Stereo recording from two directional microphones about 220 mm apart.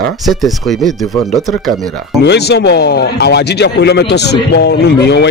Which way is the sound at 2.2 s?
50° left (ahead or behind).